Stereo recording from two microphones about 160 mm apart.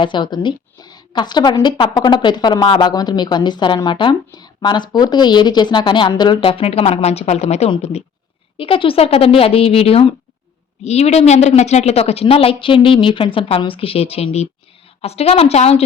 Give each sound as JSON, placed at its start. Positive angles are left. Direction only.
{"t": 0.0, "sound": "a woman's voice", "side_deg": 30}